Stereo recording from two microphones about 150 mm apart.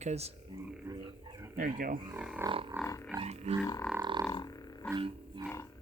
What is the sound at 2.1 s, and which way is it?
Speech, 10° right (ahead or behind).